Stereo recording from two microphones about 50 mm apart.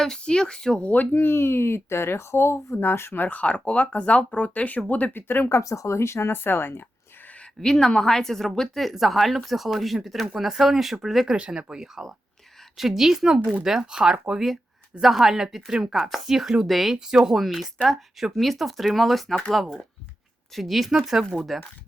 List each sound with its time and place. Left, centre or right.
0.2 s a woman's voice: centre
0.8 s speech: left
1.1 s speech: left
2.7 s speech: left
3.2 s speech: left
5.1 s speech: left
5.5 s speech: left
7.6 s a woman's voice: centre
11.3 s speech: centre
12.7 s speech: centre